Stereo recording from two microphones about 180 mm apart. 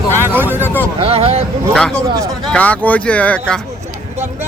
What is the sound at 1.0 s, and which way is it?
Speech, 35° right (ahead or behind).